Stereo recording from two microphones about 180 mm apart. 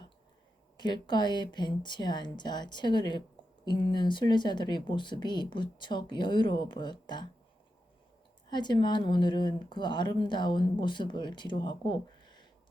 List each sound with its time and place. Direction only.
0.8 s speech: 25° left (ahead or behind)
8.4 s speech: 25° left (ahead or behind)